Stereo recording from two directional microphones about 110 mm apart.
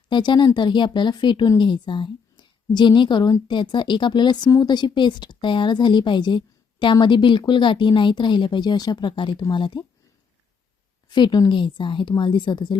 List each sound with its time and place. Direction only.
0.1 s speech: 45° left (ahead or behind)
11.1 s speech: 40° left (ahead or behind)